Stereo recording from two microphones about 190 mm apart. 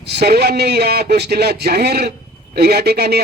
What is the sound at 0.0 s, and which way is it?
Speech, 60° right (ahead or behind).